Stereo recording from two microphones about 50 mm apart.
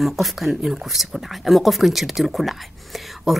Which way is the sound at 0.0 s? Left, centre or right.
Centre.